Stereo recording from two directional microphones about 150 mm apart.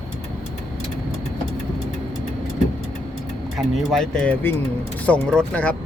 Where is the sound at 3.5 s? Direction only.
Centre (ahead or behind).